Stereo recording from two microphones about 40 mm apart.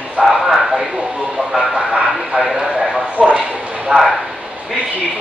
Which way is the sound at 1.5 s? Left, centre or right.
Centre.